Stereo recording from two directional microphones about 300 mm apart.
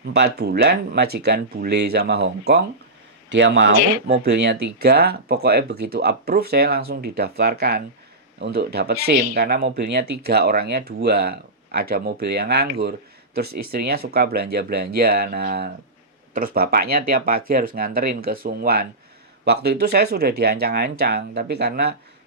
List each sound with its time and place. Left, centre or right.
0.0 s speech: right
3.8 s speech: left
4.0 s speech: right
13.5 s speech: right
13.7 s speech: right